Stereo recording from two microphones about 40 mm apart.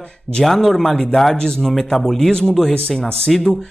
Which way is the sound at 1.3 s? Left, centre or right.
Centre.